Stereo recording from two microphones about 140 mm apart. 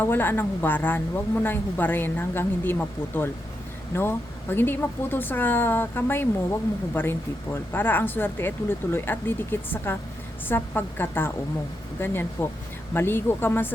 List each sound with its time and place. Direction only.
0.0 s speech: 15° left (ahead or behind)